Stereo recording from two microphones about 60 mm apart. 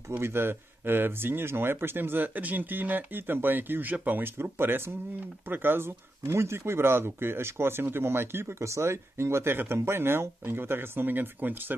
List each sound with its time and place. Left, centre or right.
0.2 s speech: right